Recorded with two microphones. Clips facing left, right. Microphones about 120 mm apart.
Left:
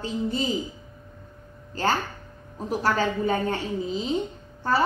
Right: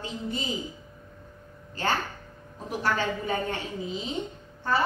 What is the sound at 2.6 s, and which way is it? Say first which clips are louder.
A woman's voice: left 4 dB; 40° left (ahead or behind).